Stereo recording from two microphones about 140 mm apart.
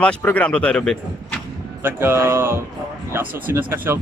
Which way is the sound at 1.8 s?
15° right (ahead or behind).